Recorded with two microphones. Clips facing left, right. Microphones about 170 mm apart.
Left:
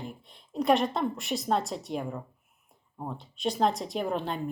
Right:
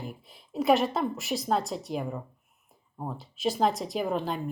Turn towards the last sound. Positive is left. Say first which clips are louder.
# right 1 dB
turn(degrees=0)  # may be behind; listen again after turning